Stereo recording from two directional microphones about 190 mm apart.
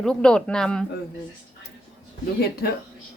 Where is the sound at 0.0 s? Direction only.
5° left (ahead or behind).